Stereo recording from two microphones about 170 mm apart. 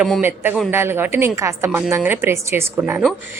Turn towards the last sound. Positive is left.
turn(degrees=-10)  # may be behind; listen again after turning